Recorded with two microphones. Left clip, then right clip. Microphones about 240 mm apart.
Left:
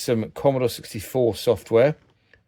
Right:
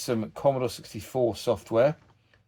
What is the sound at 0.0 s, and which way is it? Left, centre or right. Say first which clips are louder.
Speech: left 4 dB; left.